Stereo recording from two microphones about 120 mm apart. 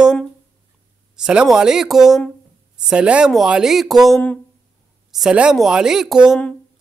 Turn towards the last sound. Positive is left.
turn(degrees=-5)  # may be behind; listen again after turning